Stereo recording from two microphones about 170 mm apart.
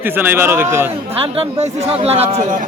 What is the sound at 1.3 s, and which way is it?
Speech, 35° right (ahead or behind).